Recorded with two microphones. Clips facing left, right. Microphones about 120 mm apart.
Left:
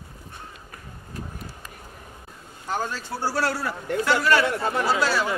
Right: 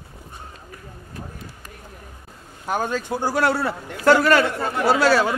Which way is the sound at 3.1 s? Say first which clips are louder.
Right 4 dB; 15° right (ahead or behind).